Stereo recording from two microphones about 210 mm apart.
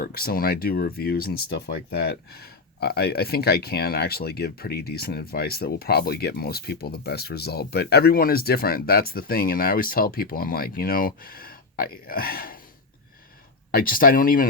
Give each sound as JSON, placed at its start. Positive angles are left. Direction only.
{"t": 0.0, "sound": "speech", "side_deg": 45}
{"t": 13.7, "sound": "speech", "side_deg": 45}